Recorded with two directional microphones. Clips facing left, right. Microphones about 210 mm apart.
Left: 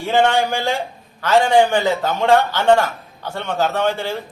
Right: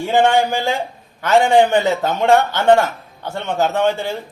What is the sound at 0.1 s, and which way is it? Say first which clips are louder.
A man's voice: right 1 dB; 15° right (ahead or behind).